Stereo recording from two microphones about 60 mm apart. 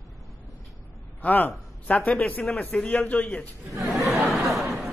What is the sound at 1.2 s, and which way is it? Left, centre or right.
A man's voice, left.